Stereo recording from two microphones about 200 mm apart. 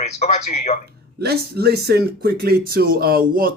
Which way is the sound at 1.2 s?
50° right (ahead or behind).